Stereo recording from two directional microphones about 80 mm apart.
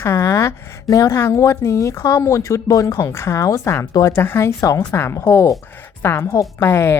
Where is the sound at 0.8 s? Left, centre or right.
Left.